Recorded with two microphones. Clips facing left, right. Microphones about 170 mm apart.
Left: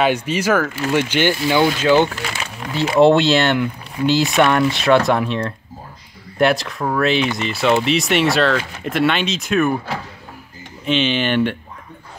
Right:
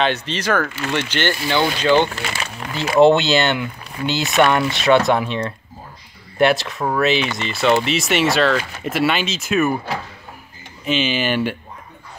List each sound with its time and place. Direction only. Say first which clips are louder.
0.0 s speech: left 3 dB; 10° left (ahead or behind)
10.9 s speech: left 2 dB; 5° right (ahead or behind)